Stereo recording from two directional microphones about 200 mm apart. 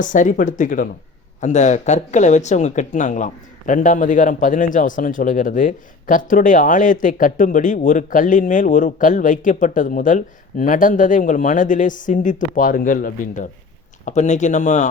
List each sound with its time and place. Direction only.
0.0 s speech: 40° left (ahead or behind)